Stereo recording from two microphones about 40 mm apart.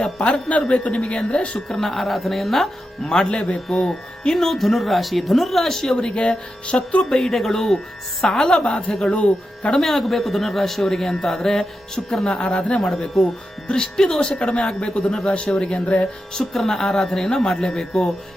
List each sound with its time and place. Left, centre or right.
0.7 s speech: left
1.5 s speech: centre
5.6 s speech: centre
6.0 s speech: left
6.9 s speech: centre
9.2 s speech: left
9.8 s speech: centre
12.2 s speech: left
14.3 s speech: left
16.0 s speech: centre